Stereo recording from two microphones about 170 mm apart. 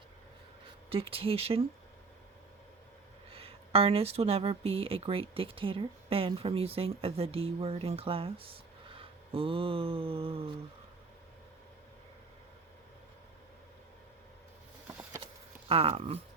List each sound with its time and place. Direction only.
0.9 s speech: 35° right (ahead or behind)
3.3 s speech: 35° right (ahead or behind)
9.0 s a sound: 30° right (ahead or behind)
15.7 s speech: 35° right (ahead or behind)